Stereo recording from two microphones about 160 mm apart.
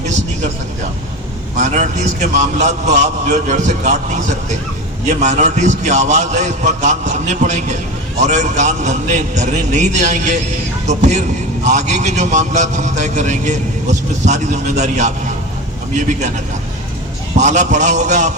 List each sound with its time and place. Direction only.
1.5 s a man's voice: 50° right (ahead or behind)
17.3 s a man's voice: 50° right (ahead or behind)